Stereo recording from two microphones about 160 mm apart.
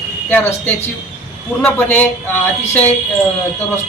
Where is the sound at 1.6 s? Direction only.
10° left (ahead or behind).